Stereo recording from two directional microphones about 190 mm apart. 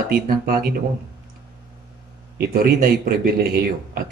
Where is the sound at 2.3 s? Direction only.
50° right (ahead or behind).